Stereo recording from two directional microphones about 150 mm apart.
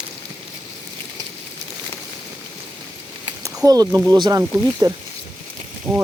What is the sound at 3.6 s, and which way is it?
Speech, 25° right (ahead or behind).